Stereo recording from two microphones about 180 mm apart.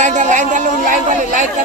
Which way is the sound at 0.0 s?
40° right (ahead or behind).